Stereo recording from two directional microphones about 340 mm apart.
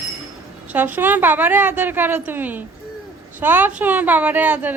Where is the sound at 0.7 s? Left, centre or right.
Centre.